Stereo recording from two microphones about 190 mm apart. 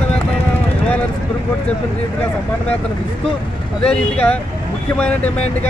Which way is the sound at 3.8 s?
5° left (ahead or behind).